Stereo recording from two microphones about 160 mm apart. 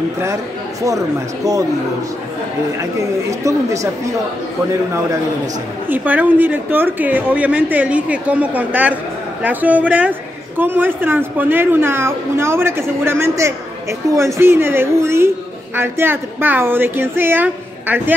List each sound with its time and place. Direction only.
0.8 s speech: 20° right (ahead or behind)
2.8 s speech: 20° right (ahead or behind)
5.9 s a woman's voice: 10° right (ahead or behind)